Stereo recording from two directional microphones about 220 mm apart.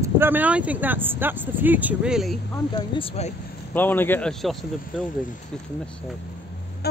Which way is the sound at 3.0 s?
30° left (ahead or behind).